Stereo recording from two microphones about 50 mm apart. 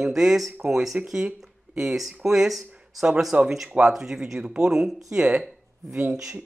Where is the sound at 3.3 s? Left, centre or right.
Right.